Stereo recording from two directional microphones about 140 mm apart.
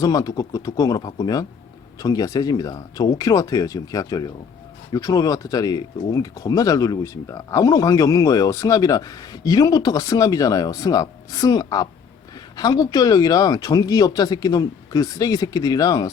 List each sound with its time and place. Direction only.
0.0 s speech: 25° left (ahead or behind)